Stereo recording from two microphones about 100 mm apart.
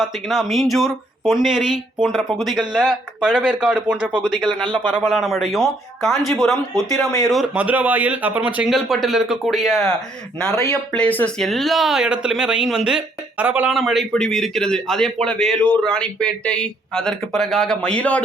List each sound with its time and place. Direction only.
0.0 s speech: 5° right (ahead or behind)
7.4 s speech: 15° right (ahead or behind)
8.7 s speech: centre (ahead or behind)
10.7 s speech: 10° left (ahead or behind)
11.3 s speech: centre (ahead or behind); by 13.7 s 15° right (ahead or behind)
13.7 s speech: centre (ahead or behind)